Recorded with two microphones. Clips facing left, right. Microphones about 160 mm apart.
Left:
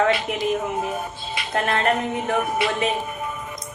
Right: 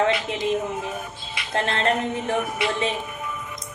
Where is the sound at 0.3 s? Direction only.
25° right (ahead or behind).